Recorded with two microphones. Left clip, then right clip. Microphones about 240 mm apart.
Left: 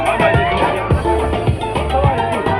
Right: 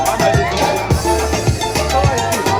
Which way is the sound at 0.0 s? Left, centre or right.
Right.